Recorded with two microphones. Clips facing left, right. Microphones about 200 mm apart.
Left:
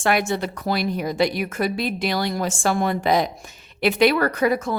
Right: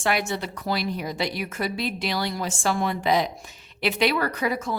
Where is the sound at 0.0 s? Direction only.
50° left (ahead or behind).